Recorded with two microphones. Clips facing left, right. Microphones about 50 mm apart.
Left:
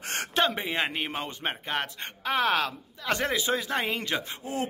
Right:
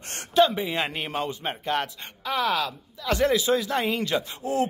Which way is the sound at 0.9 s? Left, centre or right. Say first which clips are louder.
Right 2 dB; centre.